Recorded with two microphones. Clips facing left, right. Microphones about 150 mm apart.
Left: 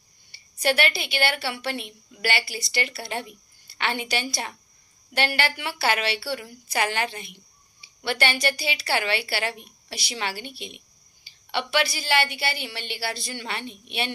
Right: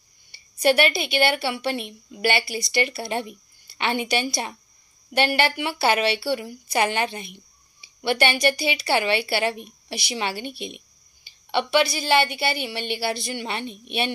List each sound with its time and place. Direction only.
0.3 s a woman's voice: 20° right (ahead or behind)
11.5 s a woman's voice: 20° right (ahead or behind)